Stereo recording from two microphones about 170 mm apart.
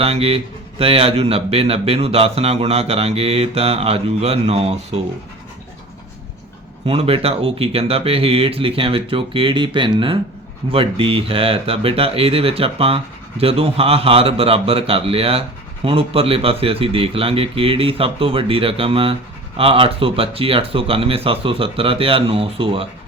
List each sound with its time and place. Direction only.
0.0 s speech: 35° right (ahead or behind)
6.8 s speech: 35° right (ahead or behind)